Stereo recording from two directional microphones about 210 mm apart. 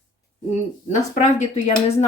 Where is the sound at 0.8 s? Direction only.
35° left (ahead or behind).